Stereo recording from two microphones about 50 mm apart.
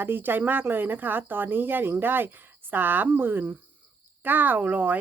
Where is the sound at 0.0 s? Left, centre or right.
Right.